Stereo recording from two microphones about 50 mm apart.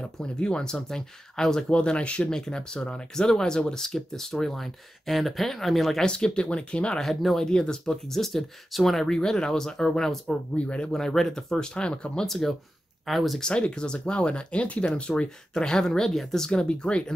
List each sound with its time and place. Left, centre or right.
0.2 s speech: centre
6.0 s speech: centre
7.0 s speech: centre
7.4 s speech: centre
7.9 s speech: centre
10.2 s speech: left
10.9 s speech: centre
11.5 s speech: centre
12.3 s speech: centre
13.4 s speech: centre